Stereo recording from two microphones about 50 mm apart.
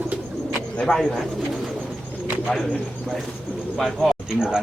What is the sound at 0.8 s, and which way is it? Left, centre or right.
Speech, centre.